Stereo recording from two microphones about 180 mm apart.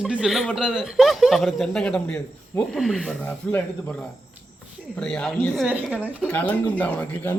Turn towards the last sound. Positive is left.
turn(degrees=10)  # may be behind; listen again after turning